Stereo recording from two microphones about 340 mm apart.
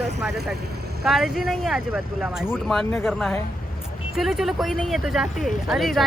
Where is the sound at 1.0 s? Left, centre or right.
Centre.